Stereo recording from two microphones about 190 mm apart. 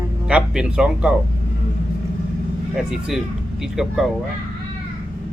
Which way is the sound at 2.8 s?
Centre (ahead or behind).